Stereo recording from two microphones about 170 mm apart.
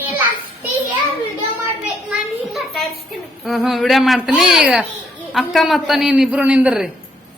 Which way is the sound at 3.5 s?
Centre (ahead or behind).